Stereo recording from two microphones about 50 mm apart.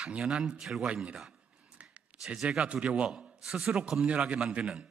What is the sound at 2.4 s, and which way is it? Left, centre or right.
A man's voice, right.